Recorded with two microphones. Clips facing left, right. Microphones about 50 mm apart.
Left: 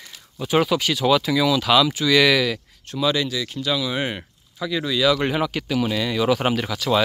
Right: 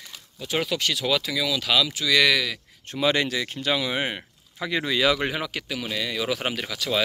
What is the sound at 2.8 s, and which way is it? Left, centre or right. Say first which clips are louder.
Speech: left 1 dB; right.